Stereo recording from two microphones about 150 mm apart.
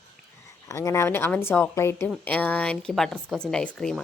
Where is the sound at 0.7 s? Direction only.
20° left (ahead or behind).